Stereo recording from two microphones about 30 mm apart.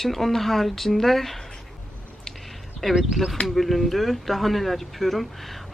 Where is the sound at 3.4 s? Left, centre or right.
Centre.